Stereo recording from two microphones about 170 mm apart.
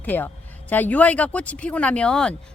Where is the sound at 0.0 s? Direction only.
10° left (ahead or behind).